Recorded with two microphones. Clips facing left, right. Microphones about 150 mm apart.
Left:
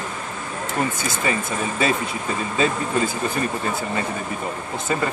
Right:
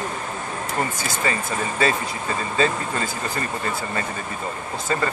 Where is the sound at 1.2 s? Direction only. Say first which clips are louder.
Left 2 dB; 15° left (ahead or behind).